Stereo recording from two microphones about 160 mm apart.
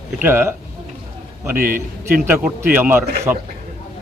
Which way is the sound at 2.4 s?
15° right (ahead or behind).